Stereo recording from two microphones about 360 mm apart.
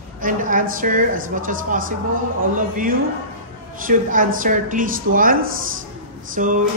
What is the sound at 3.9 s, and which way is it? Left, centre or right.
Speech, right.